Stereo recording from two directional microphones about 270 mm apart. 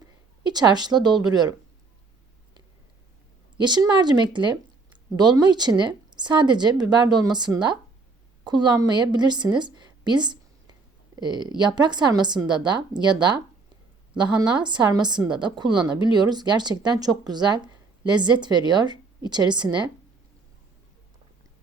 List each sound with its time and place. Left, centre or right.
0.4 s a woman's voice: centre
3.6 s a woman's voice: centre